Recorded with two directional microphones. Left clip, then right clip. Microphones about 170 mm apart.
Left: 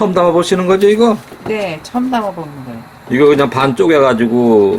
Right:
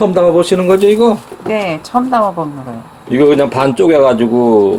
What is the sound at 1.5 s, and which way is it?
Speech, 30° right (ahead or behind).